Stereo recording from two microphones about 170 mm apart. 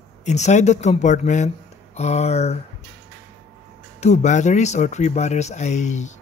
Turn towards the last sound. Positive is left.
turn(degrees=45)  # may be behind; listen again after turning